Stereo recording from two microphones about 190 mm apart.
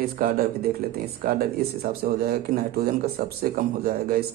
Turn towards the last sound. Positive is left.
turn(degrees=-50)  # may be behind; listen again after turning